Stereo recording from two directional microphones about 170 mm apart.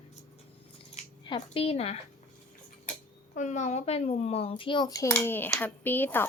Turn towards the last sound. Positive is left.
turn(degrees=10)  # may be behind; listen again after turning